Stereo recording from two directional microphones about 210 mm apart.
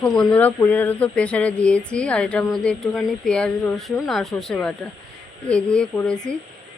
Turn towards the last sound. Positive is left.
turn(degrees=5)  # may be behind; listen again after turning